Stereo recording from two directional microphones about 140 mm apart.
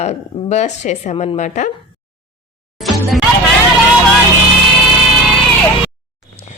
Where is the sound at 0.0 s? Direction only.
55° left (ahead or behind).